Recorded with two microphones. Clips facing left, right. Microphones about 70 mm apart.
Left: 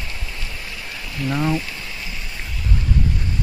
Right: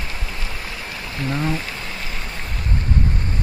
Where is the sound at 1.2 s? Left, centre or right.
Right.